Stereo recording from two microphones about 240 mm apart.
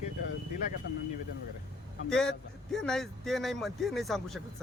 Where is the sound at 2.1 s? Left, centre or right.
Centre.